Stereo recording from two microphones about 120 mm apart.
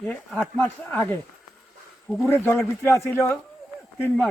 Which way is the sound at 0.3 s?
15° left (ahead or behind).